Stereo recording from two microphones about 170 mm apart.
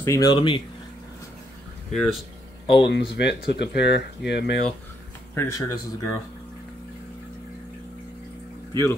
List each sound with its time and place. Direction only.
0.0 s speech: 20° left (ahead or behind)
1.9 s speech: centre (ahead or behind)
2.6 s speech: 30° left (ahead or behind)
3.2 s speech: 80° left
5.3 s speech: 15° left (ahead or behind)